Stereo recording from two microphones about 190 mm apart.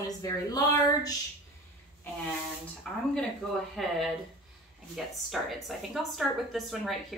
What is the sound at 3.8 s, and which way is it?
Speech, centre (ahead or behind).